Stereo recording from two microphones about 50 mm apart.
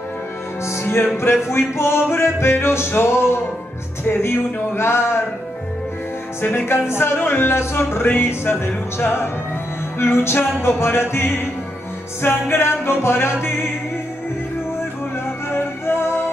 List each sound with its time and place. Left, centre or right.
0.8 s music: left
6.4 s speech: left
9.9 s music: left
12.2 s speech: left
15.5 s music: left